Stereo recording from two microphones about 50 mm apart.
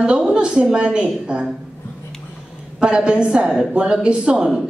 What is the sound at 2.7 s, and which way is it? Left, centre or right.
Speech, centre.